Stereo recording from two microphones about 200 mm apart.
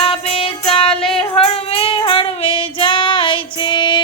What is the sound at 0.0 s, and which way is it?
Female singing, 30° left (ahead or behind).